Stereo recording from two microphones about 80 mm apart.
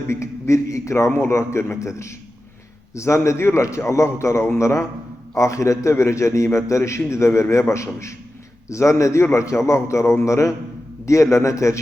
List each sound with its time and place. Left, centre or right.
0.1 s a man's voice: left